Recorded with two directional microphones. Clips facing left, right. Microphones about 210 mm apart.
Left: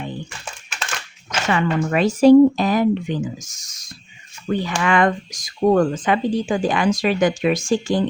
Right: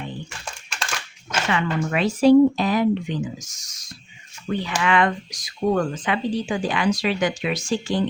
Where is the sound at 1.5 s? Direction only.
45° left (ahead or behind).